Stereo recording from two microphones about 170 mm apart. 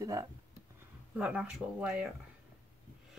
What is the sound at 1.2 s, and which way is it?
Speech, 5° right (ahead or behind).